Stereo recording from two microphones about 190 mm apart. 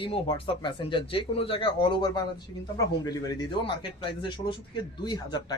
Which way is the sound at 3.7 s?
25° left (ahead or behind).